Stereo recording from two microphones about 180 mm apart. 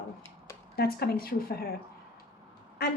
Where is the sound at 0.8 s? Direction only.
60° left (ahead or behind).